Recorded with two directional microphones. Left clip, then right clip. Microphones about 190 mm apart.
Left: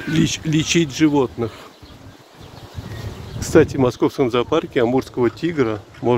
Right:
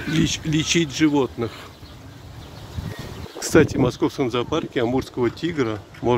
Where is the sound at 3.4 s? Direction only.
10° left (ahead or behind).